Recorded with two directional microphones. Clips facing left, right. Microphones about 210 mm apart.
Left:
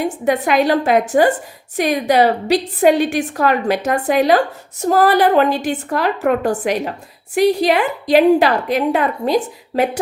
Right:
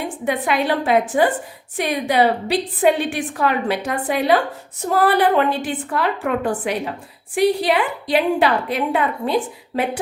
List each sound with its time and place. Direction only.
0.3 s a woman's voice: 45° left (ahead or behind)